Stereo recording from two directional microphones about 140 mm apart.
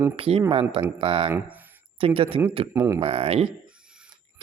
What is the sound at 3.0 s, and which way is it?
Speech, 45° right (ahead or behind).